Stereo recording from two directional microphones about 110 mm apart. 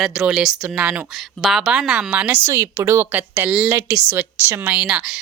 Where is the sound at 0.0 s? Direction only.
5° right (ahead or behind).